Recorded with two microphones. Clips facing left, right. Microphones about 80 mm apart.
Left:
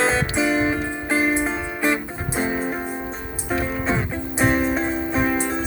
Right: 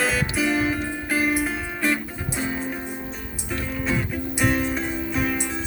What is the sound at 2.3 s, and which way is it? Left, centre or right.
Music, left.